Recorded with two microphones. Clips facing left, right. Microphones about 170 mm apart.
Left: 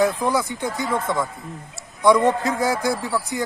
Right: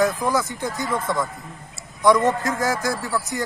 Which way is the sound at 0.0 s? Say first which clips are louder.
Left 1 dB; 10° left (ahead or behind).